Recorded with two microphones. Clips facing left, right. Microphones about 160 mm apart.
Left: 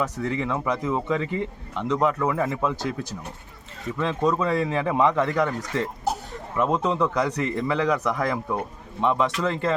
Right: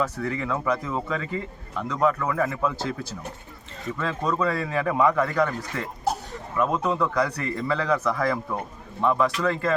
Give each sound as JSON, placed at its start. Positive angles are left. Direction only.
{"t": 0.0, "sound": "speech", "side_deg": 20}
{"t": 3.9, "sound": "speech", "side_deg": 20}